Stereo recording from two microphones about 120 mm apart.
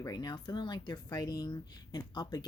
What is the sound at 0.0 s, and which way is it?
Speech, 35° left (ahead or behind).